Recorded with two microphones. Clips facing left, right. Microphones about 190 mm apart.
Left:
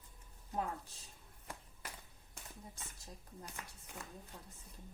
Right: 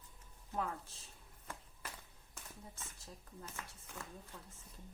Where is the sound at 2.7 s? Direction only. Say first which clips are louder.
Even; 15° left (ahead or behind).